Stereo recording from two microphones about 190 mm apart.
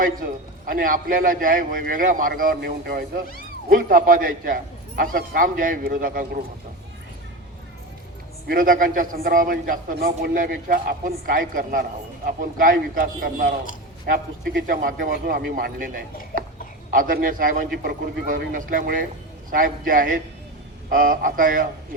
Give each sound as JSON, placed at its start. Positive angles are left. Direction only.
{"t": 0.0, "sound": "a man's voice", "side_deg": -45}
{"t": 8.4, "sound": "a man's voice", "side_deg": -45}